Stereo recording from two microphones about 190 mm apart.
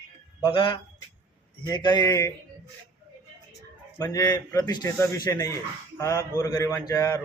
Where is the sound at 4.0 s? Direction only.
15° left (ahead or behind).